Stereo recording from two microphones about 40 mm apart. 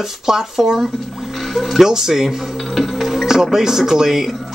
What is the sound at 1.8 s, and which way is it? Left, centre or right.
Speech, centre.